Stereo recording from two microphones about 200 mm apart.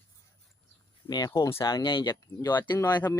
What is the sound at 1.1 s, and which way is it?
Speech, 20° left (ahead or behind).